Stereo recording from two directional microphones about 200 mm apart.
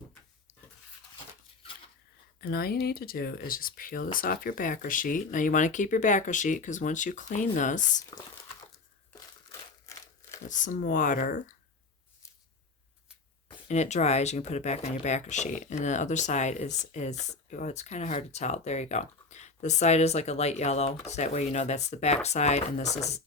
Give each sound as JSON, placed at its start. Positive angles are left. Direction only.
{"t": 2.4, "sound": "speech", "side_deg": 50}
{"t": 9.5, "sound": "crumpling", "side_deg": 15}
{"t": 10.5, "sound": "speech", "side_deg": 40}
{"t": 13.7, "sound": "speech", "side_deg": 35}